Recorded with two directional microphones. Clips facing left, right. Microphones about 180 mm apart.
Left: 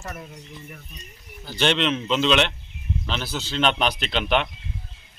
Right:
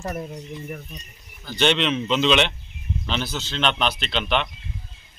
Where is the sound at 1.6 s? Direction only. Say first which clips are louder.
Right 1 dB; centre (ahead or behind).